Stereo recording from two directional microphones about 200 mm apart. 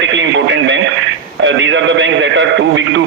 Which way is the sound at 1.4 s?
70° right (ahead or behind).